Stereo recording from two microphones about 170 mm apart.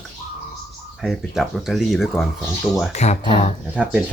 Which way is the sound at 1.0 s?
Centre (ahead or behind).